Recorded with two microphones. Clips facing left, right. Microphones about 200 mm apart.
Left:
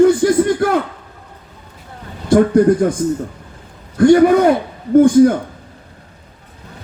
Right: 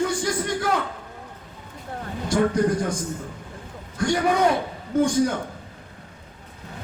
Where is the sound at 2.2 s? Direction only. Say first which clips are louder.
Left 10 dB; 55° left (ahead or behind).